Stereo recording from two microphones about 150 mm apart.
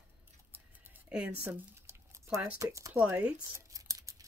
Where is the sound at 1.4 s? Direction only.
15° right (ahead or behind).